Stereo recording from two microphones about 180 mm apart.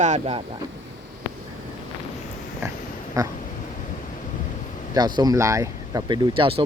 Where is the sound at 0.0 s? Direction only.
40° right (ahead or behind).